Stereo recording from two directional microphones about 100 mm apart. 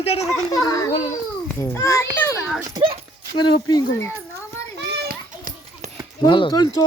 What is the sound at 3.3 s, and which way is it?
Speech, 50° left (ahead or behind).